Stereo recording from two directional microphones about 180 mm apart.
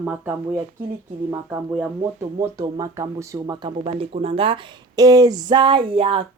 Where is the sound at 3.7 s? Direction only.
35° right (ahead or behind).